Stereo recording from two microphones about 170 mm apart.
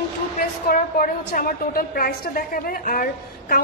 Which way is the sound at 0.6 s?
60° left (ahead or behind).